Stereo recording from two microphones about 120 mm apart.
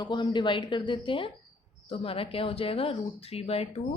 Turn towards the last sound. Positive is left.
turn(degrees=55)  # may be behind; listen again after turning